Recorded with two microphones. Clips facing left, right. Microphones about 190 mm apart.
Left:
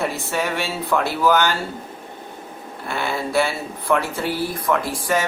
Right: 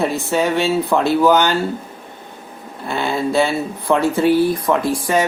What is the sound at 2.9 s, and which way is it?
Speech, 20° right (ahead or behind).